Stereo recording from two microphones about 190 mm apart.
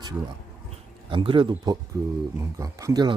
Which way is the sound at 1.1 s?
25° right (ahead or behind).